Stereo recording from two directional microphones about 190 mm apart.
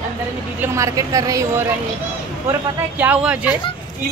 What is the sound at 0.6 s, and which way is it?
A woman's voice, 15° right (ahead or behind).